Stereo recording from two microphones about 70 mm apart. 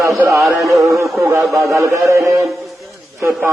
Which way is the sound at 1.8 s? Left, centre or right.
Right.